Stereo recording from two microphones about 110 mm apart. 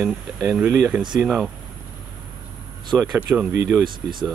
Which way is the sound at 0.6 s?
25° right (ahead or behind).